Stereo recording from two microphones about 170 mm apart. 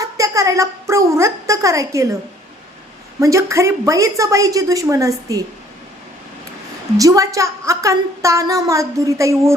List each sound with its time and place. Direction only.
0.0 s a sound: 20° right (ahead or behind)
3.2 s a woman's voice: 15° right (ahead or behind)
6.9 s a woman's voice: 20° right (ahead or behind)